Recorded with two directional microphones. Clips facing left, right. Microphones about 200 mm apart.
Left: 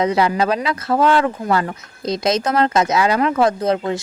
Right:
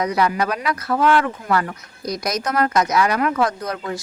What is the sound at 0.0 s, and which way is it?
Speech, 25° left (ahead or behind).